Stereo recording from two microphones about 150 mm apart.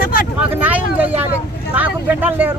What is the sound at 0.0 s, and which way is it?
Vehicle, 70° left (ahead or behind).